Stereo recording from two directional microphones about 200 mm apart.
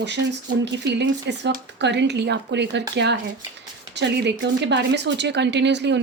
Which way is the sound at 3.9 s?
60° right (ahead or behind).